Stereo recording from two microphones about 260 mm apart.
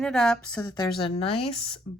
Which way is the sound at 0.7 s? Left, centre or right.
Centre.